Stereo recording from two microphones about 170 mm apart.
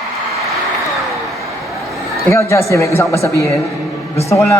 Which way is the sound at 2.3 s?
15° left (ahead or behind).